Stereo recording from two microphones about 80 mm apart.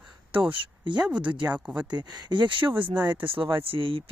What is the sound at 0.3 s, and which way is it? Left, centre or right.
Speech, right.